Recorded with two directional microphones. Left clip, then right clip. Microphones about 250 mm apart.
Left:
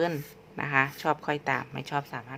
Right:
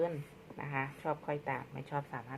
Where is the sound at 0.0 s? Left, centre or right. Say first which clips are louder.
Left 6 dB; left.